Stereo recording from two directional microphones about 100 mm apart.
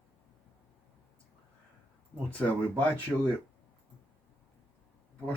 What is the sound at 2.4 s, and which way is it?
Speech, 15° left (ahead or behind).